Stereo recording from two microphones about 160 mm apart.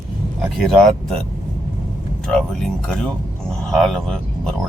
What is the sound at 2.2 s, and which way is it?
Speech, 5° left (ahead or behind).